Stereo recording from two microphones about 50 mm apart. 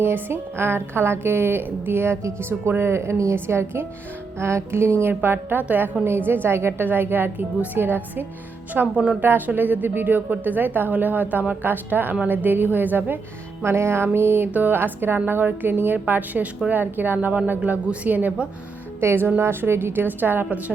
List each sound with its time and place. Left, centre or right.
0.0 s a woman's voice: right
3.3 s a woman's voice: right
6.8 s a woman's voice: right
8.8 s speech: right
9.2 s speech: right
13.6 s a woman's voice: right
18.9 s a woman's voice: right